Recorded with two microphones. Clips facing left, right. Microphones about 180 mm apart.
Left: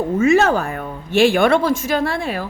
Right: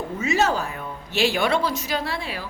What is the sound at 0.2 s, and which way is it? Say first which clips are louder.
A woman's voice: left 7 dB; 55° left (ahead or behind).